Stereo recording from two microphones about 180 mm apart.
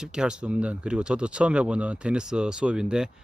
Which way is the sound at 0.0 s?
5° right (ahead or behind).